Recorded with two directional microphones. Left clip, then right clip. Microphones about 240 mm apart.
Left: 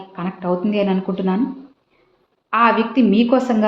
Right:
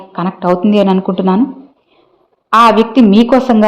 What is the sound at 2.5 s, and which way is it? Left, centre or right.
Speech, right.